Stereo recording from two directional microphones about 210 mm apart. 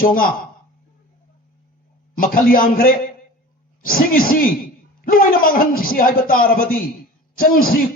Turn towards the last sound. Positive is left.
turn(degrees=45)  # may be behind; listen again after turning